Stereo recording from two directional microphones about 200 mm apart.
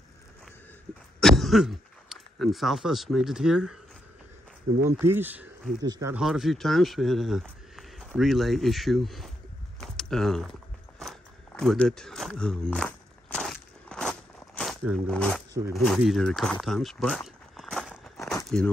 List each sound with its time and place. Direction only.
1.2 s speech: centre (ahead or behind)
4.8 s speech: 10° right (ahead or behind)
6.1 s speech: centre (ahead or behind)
9.8 s a sound: 5° left (ahead or behind)
11.0 s walk: centre (ahead or behind)
15.7 s speech: centre (ahead or behind)
18.2 s a sound: 15° left (ahead or behind)